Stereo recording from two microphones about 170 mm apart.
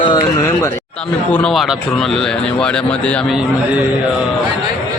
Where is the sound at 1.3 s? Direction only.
5° left (ahead or behind).